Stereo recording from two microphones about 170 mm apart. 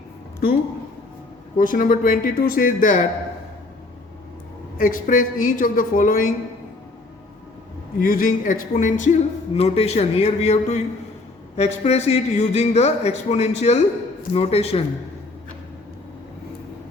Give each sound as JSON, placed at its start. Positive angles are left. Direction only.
{"t": 1.5, "sound": "speech", "side_deg": 50}
{"t": 4.8, "sound": "speech", "side_deg": 50}
{"t": 7.9, "sound": "a man's voice", "side_deg": 55}